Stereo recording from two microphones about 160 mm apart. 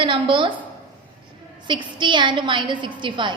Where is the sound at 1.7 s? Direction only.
30° right (ahead or behind).